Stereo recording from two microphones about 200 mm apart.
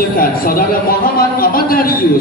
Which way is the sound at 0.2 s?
45° left (ahead or behind).